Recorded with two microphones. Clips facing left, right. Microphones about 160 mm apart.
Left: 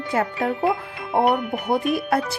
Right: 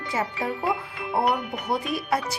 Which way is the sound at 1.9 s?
55° left (ahead or behind).